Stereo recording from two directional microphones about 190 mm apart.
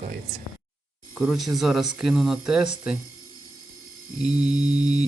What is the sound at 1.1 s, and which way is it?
Speech, 5° right (ahead or behind).